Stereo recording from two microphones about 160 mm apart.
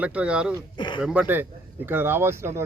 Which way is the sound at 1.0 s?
5° right (ahead or behind).